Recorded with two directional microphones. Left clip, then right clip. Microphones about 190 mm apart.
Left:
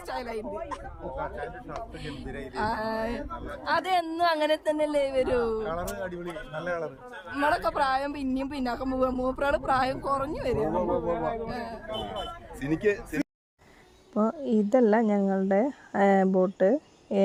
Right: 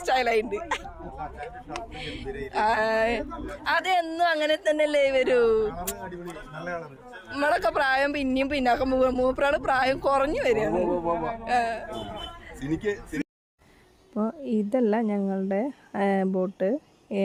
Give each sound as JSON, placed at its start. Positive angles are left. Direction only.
{"t": 0.0, "sound": "speech", "side_deg": -5}
{"t": 2.5, "sound": "a woman's voice", "side_deg": 0}
{"t": 6.6, "sound": "a man's voice", "side_deg": 25}
{"t": 7.3, "sound": "a woman's voice", "side_deg": 0}
{"t": 12.6, "sound": "speech", "side_deg": 15}
{"t": 14.1, "sound": "a woman's voice", "side_deg": -5}